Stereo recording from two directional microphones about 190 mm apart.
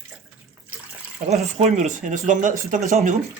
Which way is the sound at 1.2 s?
35° right (ahead or behind).